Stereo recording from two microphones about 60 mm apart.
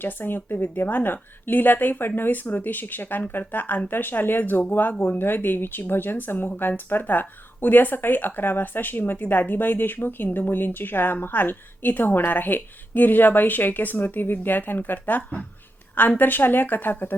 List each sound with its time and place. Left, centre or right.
0.0 s speech: left